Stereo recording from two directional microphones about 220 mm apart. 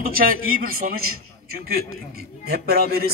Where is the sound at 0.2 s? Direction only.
40° right (ahead or behind).